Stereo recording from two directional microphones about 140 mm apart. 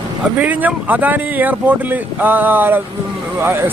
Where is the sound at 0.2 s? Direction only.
10° right (ahead or behind).